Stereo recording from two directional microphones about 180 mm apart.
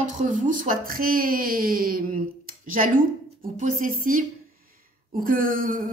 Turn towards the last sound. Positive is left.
turn(degrees=-50)  # may be behind; listen again after turning